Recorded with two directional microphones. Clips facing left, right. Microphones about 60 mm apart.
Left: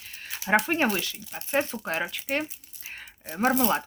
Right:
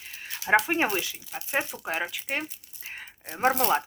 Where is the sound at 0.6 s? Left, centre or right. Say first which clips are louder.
Left 1 dB; centre.